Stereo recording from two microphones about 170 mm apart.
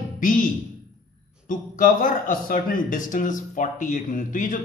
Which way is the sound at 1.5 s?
50° left (ahead or behind).